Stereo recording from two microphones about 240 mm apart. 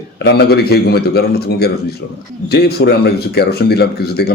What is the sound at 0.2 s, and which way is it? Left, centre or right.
Speech, left.